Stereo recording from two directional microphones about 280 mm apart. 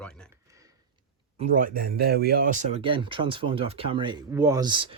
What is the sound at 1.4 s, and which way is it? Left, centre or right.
Speech, right.